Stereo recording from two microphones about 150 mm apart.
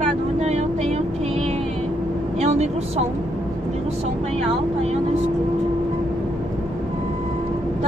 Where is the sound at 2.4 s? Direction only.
45° right (ahead or behind).